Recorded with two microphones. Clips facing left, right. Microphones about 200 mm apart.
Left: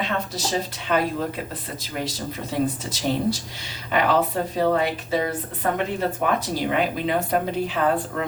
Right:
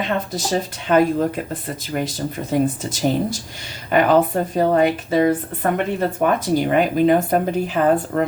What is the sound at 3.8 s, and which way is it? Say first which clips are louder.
Speech: right 6 dB; 50° right (ahead or behind).